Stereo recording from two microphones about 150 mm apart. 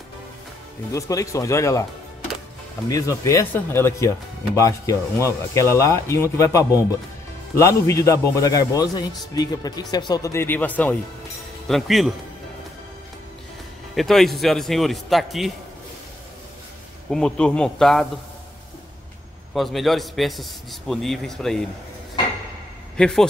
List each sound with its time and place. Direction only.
0.9 s a man's voice: 20° left (ahead or behind)
2.9 s a man's voice: 20° left (ahead or behind)
11.6 s a man's voice: centre (ahead or behind)
13.9 s a man's voice: centre (ahead or behind)
17.1 s a man's voice: 5° left (ahead or behind)
19.5 s a man's voice: centre (ahead or behind)
22.9 s speech: 5° left (ahead or behind)